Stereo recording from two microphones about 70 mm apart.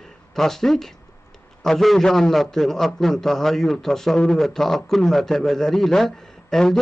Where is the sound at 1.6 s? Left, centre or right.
Centre.